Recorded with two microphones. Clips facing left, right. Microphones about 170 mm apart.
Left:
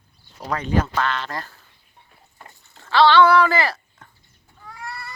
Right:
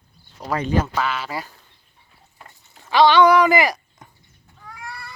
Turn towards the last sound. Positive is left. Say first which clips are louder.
# left 2 dB
turn(degrees=0)  # may be behind; listen again after turning